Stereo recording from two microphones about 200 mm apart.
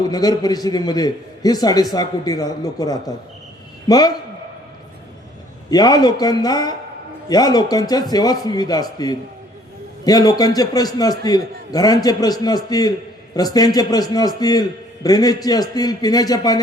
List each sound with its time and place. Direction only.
0.1 s a man's voice: 20° left (ahead or behind)
5.7 s a man's voice: 20° left (ahead or behind)